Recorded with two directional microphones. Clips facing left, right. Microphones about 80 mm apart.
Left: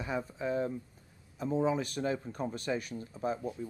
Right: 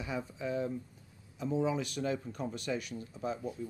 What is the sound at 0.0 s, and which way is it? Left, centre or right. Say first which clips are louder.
Speech: left 3 dB; left.